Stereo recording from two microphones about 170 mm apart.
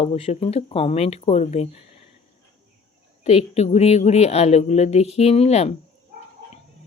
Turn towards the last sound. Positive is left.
turn(degrees=40)  # may be behind; listen again after turning